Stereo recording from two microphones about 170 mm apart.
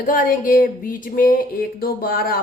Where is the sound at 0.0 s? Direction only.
55° left (ahead or behind).